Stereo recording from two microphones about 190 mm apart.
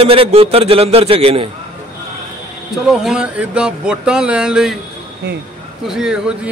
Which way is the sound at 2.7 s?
Centre (ahead or behind).